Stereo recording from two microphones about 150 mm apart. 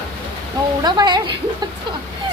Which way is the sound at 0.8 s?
30° right (ahead or behind).